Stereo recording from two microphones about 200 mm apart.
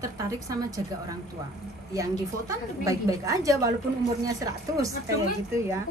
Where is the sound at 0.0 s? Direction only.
15° right (ahead or behind).